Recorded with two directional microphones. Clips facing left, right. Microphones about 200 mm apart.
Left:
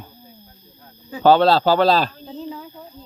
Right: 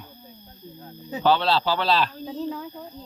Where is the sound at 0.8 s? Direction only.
30° right (ahead or behind).